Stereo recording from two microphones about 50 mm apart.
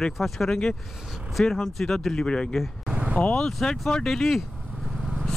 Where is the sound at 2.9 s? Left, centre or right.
Right.